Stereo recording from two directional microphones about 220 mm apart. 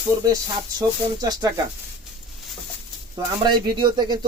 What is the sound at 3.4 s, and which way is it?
Speech, 20° right (ahead or behind).